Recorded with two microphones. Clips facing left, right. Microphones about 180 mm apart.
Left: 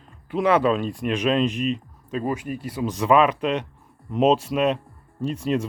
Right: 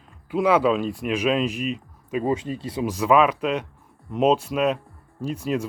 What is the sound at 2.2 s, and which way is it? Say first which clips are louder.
Speech: right 2 dB; 25° right (ahead or behind).